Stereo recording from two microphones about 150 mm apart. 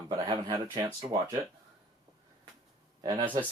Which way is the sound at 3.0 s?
30° right (ahead or behind).